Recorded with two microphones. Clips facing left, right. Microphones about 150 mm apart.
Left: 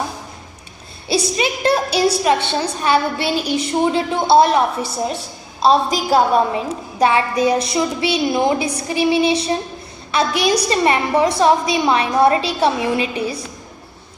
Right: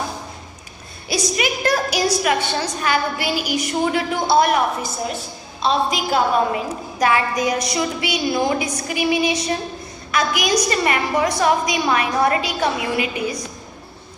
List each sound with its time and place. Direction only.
1.0 s a woman's voice: 30° left (ahead or behind)